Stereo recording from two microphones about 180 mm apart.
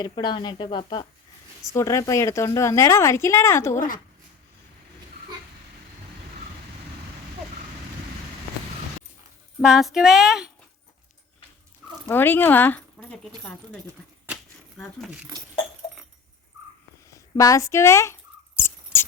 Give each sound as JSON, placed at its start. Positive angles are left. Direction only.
{"t": 0.0, "sound": "speech", "side_deg": 25}
{"t": 3.8, "sound": "speech", "side_deg": 50}
{"t": 9.6, "sound": "speech", "side_deg": 0}
{"t": 12.0, "sound": "speech", "side_deg": 10}
{"t": 17.1, "sound": "mouse", "side_deg": 20}